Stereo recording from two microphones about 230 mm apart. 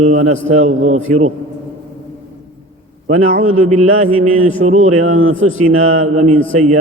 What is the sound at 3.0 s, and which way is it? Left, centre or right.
A man's voice, right.